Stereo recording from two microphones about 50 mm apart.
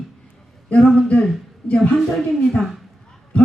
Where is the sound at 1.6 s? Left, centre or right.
Left.